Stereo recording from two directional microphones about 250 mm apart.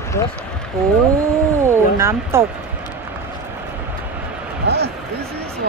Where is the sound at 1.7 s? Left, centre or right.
Centre.